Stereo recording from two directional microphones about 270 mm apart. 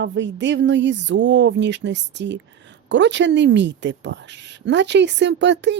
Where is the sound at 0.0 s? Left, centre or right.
Right.